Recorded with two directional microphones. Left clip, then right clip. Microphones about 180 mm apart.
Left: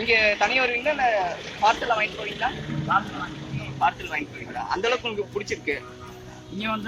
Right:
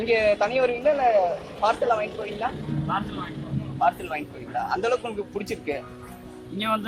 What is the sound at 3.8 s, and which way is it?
A man's voice, 55° right (ahead or behind).